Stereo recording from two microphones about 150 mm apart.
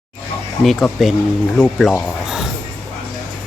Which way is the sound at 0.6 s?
Centre (ahead or behind).